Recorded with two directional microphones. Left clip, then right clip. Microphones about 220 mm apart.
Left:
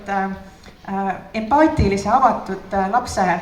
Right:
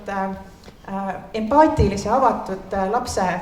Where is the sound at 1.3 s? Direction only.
50° right (ahead or behind).